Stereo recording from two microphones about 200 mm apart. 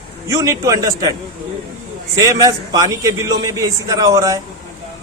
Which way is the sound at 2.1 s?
15° right (ahead or behind).